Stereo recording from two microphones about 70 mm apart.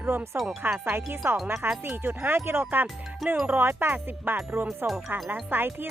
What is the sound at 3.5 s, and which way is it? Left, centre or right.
Speech, right.